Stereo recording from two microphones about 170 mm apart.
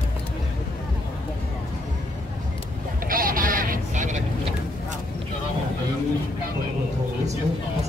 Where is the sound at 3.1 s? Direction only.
55° right (ahead or behind).